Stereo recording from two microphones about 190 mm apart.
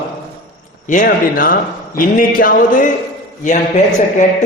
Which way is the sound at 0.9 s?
45° left (ahead or behind).